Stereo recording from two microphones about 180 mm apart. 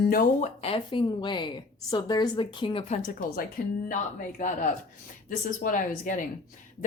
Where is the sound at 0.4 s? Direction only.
35° left (ahead or behind).